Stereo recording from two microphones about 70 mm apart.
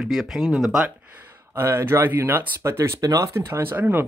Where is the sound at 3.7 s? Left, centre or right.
Right.